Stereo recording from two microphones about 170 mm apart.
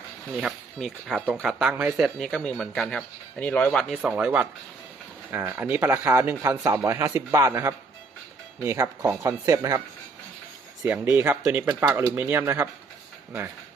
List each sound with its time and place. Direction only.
0.3 s speech: centre (ahead or behind); by 9.8 s 20° right (ahead or behind)
10.8 s speech: 10° right (ahead or behind)